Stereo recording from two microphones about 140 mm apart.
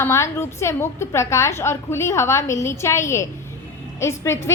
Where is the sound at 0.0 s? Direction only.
20° left (ahead or behind).